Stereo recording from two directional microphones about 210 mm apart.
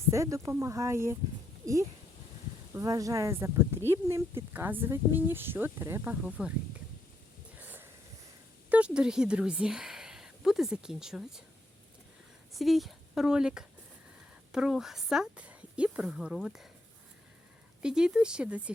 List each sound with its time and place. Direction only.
0.1 s speech: 15° right (ahead or behind)
7.6 s a sound: 10° right (ahead or behind)
8.7 s a woman's voice: 5° right (ahead or behind)
12.5 s speech: centre (ahead or behind)
17.8 s speech: 5° right (ahead or behind)